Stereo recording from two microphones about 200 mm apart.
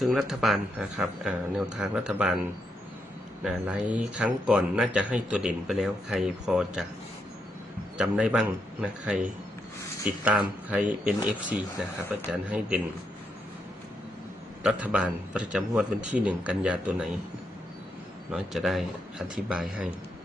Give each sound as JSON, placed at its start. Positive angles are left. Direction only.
{"t": 0.0, "sound": "a man's voice", "side_deg": 0}
{"t": 3.4, "sound": "a man's voice", "side_deg": -5}
{"t": 7.9, "sound": "a man's voice", "side_deg": -5}
{"t": 14.6, "sound": "a man's voice", "side_deg": -5}
{"t": 18.3, "sound": "a man's voice", "side_deg": 0}